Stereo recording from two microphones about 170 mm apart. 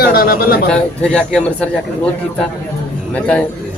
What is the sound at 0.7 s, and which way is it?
Speech, 5° left (ahead or behind).